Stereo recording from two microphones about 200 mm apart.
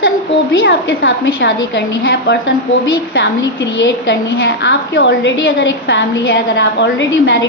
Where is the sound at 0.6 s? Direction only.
65° left (ahead or behind).